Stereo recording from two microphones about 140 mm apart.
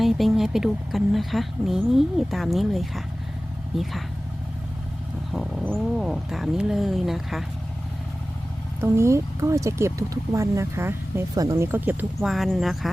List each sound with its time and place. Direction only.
0.0 s a woman's voice: centre (ahead or behind)
5.3 s a woman's voice: 5° left (ahead or behind)
8.8 s speech: 20° right (ahead or behind)
12.2 s a woman's voice: centre (ahead or behind)